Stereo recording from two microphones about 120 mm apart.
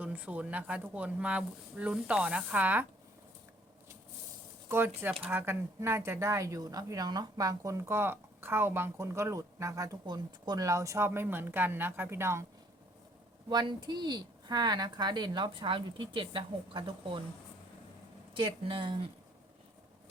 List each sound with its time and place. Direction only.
0.0 s speech: 10° right (ahead or behind)
5.2 s speech: 20° right (ahead or behind)
13.5 s a woman's voice: 40° right (ahead or behind)
18.3 s speech: 45° right (ahead or behind)